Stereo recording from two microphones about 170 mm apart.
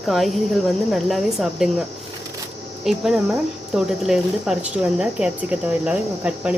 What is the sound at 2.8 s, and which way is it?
Speech, centre (ahead or behind).